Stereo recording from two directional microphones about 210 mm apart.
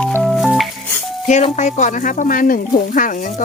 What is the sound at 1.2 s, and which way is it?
Speech, 35° left (ahead or behind).